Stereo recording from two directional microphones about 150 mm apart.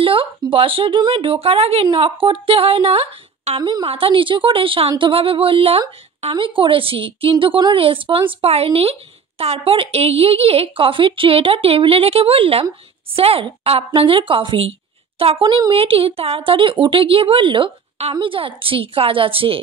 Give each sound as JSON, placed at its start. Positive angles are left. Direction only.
{"t": 0.0, "sound": "a woman's voice", "side_deg": -35}